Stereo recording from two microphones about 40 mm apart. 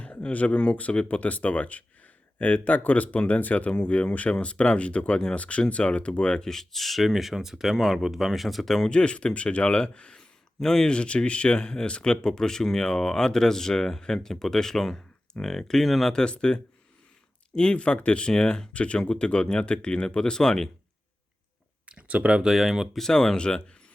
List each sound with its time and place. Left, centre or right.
0.0 s speech: left
6.4 s speech: centre
8.9 s speech: left
10.6 s speech: centre
10.8 s speech: left; by 16.1 s centre
16.3 s speech: left
21.8 s a sound: right
22.4 s speech: centre
23.0 s speech: centre